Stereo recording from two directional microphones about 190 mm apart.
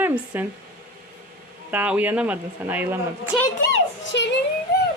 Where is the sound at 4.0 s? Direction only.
70° left (ahead or behind).